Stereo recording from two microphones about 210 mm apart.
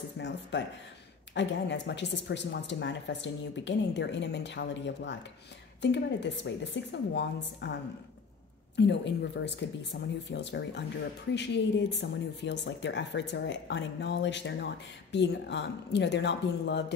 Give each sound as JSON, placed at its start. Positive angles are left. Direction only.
{"t": 0.2, "sound": "speech", "side_deg": 60}
{"t": 8.7, "sound": "speech", "side_deg": 55}